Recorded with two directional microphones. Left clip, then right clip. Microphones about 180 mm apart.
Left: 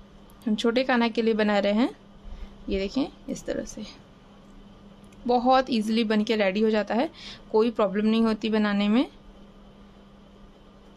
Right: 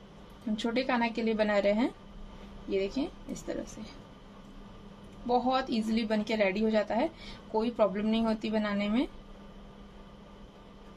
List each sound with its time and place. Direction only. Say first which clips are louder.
0.6 s a woman's voice: left 6 dB; 50° left (ahead or behind)
5.2 s a woman's voice: left 7 dB; 55° left (ahead or behind)